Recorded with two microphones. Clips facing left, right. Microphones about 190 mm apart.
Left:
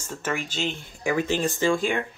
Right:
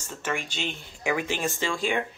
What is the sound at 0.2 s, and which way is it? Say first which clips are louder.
Speech: left 2 dB; 40° left (ahead or behind).